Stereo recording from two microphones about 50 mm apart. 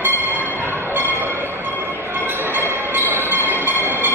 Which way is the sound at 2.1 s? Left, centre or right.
Right.